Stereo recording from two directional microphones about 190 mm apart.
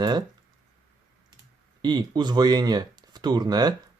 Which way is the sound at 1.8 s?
20° right (ahead or behind).